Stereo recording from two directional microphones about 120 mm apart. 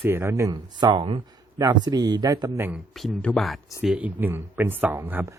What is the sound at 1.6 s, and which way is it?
Speech, 30° right (ahead or behind).